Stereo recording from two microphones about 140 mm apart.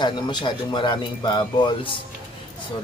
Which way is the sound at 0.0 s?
30° left (ahead or behind).